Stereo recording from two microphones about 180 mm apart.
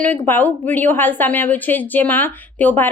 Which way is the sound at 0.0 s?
10° left (ahead or behind).